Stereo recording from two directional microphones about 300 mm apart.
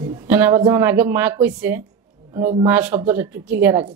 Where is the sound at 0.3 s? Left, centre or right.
Centre.